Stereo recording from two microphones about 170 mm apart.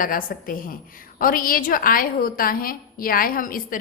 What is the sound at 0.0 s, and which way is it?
A woman's voice, 55° left (ahead or behind).